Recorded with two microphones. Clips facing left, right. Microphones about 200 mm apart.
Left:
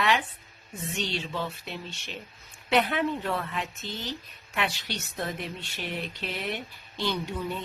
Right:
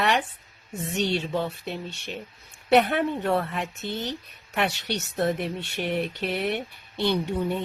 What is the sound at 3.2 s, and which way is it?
Speech, 50° right (ahead or behind).